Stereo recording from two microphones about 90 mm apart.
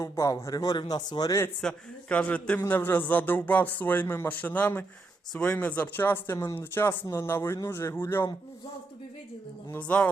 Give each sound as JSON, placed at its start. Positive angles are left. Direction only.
{"t": 0.0, "sound": "a man's voice", "side_deg": 35}
{"t": 0.8, "sound": "speech", "side_deg": 55}
{"t": 1.6, "sound": "a man's voice", "side_deg": 15}
{"t": 9.7, "sound": "a man's voice", "side_deg": 15}